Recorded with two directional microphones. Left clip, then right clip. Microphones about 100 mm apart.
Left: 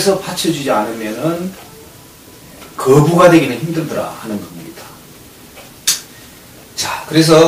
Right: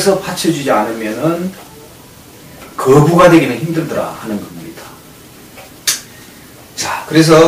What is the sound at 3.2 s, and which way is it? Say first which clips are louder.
Speech: even; 10° right (ahead or behind).